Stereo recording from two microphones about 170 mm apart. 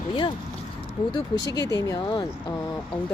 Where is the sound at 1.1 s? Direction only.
25° left (ahead or behind).